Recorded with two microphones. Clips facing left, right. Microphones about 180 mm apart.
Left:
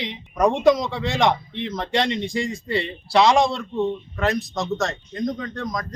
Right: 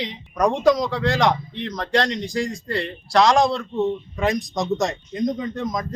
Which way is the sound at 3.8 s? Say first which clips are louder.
Right 1 dB; 15° right (ahead or behind).